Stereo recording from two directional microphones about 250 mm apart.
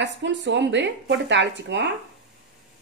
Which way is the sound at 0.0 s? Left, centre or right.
Right.